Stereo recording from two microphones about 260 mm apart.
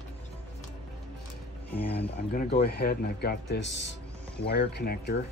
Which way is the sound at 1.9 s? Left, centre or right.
Left.